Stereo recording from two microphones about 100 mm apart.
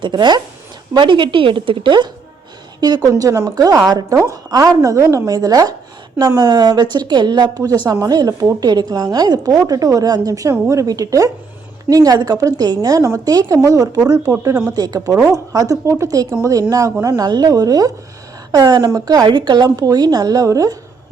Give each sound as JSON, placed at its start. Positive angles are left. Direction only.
{"t": 0.0, "sound": "a woman's voice", "side_deg": -50}
{"t": 3.1, "sound": "a woman's voice", "side_deg": -35}